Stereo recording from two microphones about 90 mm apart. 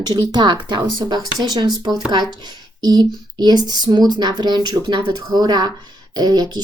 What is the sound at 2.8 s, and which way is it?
Speech, 45° right (ahead or behind).